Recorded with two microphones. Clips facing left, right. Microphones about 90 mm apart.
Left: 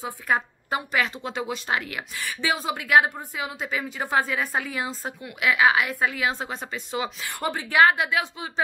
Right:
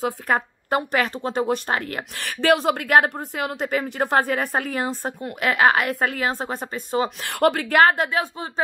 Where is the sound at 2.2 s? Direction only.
65° right (ahead or behind); by 7.3 s 45° right (ahead or behind).